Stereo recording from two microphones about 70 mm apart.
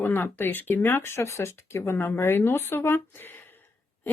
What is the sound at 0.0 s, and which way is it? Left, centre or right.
Speech, left.